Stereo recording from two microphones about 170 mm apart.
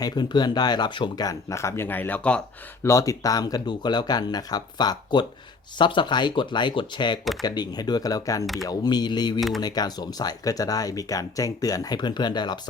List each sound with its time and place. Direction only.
0.0 s speech: 25° left (ahead or behind); by 2.4 s 10° left (ahead or behind)
2.8 s speech: 20° left (ahead or behind)